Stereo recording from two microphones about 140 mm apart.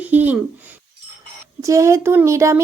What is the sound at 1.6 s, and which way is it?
Speech, 20° right (ahead or behind).